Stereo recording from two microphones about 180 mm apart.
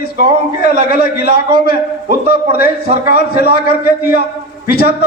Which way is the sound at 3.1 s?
60° left (ahead or behind).